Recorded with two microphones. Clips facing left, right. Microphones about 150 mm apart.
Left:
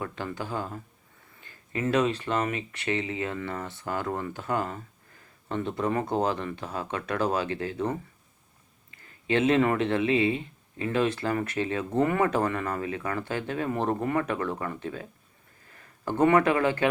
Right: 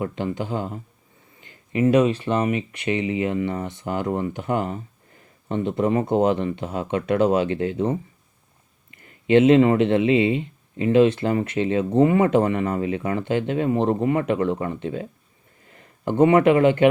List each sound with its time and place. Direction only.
0.0 s speech: 20° right (ahead or behind)
8.9 s a sound: 35° left (ahead or behind)
9.3 s speech: 25° right (ahead or behind)